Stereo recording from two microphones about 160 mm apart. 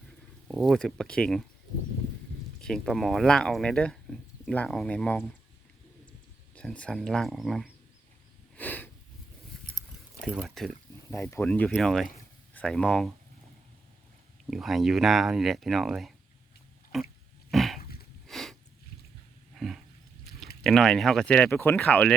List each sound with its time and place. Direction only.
0.4 s speech: centre (ahead or behind)
2.6 s speech: 5° left (ahead or behind)
6.6 s speech: 5° left (ahead or behind)
8.5 s a sound: 10° left (ahead or behind)
10.2 s speech: 5° right (ahead or behind)
11.1 s speech: 15° left (ahead or behind)
12.1 s a sound: 5° left (ahead or behind)
14.5 s speech: centre (ahead or behind)
17.5 s dog: centre (ahead or behind)
17.7 s a sound: 70° left (ahead or behind)
18.3 s a sound: centre (ahead or behind)
19.5 s roaring cats: centre (ahead or behind)
20.6 s speech: centre (ahead or behind)